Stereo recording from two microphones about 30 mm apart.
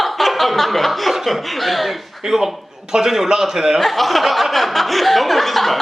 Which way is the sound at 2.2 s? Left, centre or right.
Centre.